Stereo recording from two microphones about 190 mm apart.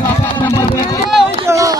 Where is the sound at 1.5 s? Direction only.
15° right (ahead or behind).